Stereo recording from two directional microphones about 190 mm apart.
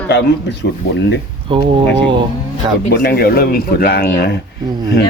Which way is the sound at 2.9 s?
55° left (ahead or behind).